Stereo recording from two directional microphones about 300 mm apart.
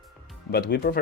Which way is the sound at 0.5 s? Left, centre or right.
Left.